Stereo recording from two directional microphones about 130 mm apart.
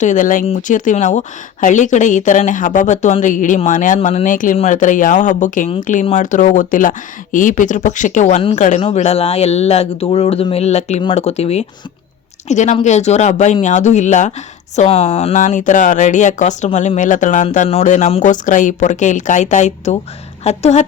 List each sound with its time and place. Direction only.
0.0 s speech: 75° left (ahead or behind); by 4.5 s 90° left
4.5 s speech: 70° left (ahead or behind)
6.1 s speech: 85° left; by 8.8 s 70° left (ahead or behind)
8.8 s speech: 55° left (ahead or behind)
12.5 s speech: 65° left (ahead or behind)
14.8 s speech: 45° left (ahead or behind)
15.4 s speech: 75° left (ahead or behind); by 20.8 s 60° left (ahead or behind)